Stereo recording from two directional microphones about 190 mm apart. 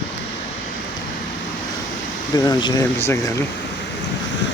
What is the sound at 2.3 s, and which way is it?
Speech, 20° left (ahead or behind).